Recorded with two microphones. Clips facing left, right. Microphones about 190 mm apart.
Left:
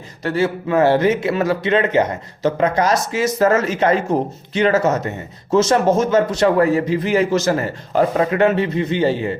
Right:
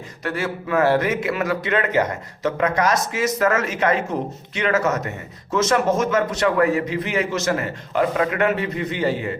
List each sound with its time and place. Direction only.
0.2 s a man's voice: 30° left (ahead or behind)